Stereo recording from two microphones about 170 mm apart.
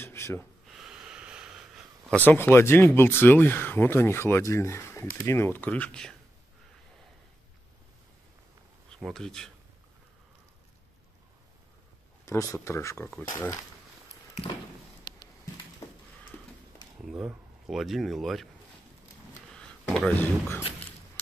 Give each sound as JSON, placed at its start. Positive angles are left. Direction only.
{"t": 0.0, "sound": "a sound", "side_deg": 15}
{"t": 0.7, "sound": "wheeze", "side_deg": -5}
{"t": 2.2, "sound": "speech", "side_deg": 10}
{"t": 8.9, "sound": "speech", "side_deg": 5}
{"t": 12.3, "sound": "speech", "side_deg": 20}
{"t": 15.0, "sound": "a sound", "side_deg": 25}
{"t": 17.0, "sound": "speech", "side_deg": -5}
{"t": 19.5, "sound": "a sound", "side_deg": 5}
{"t": 20.2, "sound": "speech", "side_deg": 15}